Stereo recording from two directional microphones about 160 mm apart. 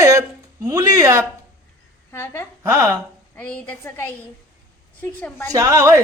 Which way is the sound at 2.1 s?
15° left (ahead or behind).